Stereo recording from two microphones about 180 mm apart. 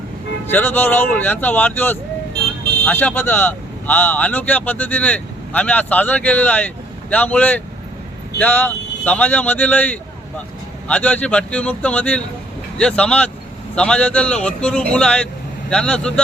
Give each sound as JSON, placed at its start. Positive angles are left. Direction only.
{"t": 0.4, "sound": "a man's voice", "side_deg": 10}